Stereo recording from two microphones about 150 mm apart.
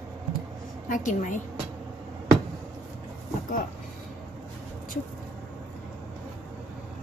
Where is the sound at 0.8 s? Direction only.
60° left (ahead or behind).